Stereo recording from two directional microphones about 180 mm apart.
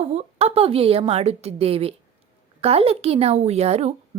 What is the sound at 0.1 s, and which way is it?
A woman's voice, 35° right (ahead or behind).